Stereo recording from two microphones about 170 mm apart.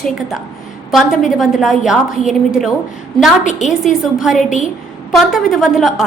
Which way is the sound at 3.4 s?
45° left (ahead or behind).